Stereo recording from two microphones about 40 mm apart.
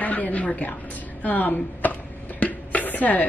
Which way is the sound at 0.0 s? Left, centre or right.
Left.